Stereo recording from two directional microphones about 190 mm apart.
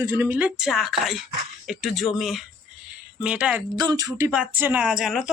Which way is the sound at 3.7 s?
20° right (ahead or behind).